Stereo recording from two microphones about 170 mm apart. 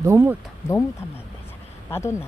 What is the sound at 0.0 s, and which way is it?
Speech, 15° right (ahead or behind).